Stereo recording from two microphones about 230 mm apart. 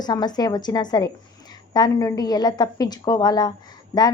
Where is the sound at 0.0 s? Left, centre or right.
Centre.